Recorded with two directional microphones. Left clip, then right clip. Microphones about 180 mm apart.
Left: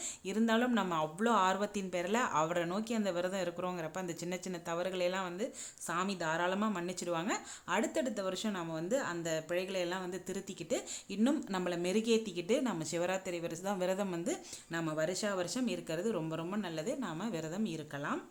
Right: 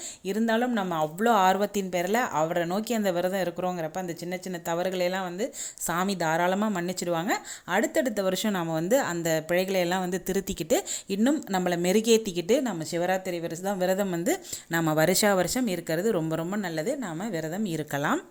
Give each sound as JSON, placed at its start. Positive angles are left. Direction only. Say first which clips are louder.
{"t": 0.3, "sound": "speech", "louder": "right 6 dB", "side_deg": -25}
{"t": 5.9, "sound": "speech", "louder": "right 8 dB", "side_deg": -30}